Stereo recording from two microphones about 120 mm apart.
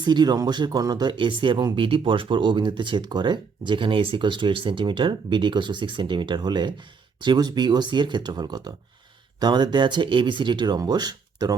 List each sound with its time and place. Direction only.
0.0 s speech: 40° right (ahead or behind)